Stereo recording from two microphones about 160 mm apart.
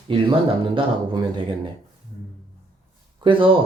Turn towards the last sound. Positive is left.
turn(degrees=-30)  # may be behind; listen again after turning